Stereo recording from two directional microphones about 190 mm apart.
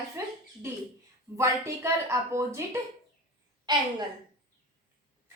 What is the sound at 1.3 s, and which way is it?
A woman's voice, 15° right (ahead or behind).